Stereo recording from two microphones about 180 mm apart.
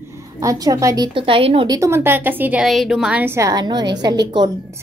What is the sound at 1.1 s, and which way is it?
A woman's voice, 30° right (ahead or behind).